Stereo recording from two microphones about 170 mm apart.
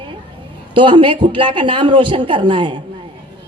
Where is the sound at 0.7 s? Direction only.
30° right (ahead or behind).